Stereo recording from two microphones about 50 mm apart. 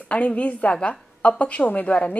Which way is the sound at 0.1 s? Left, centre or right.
Left.